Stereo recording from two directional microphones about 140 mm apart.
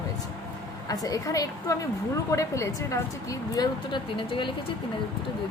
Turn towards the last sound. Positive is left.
turn(degrees=35)  # may be behind; listen again after turning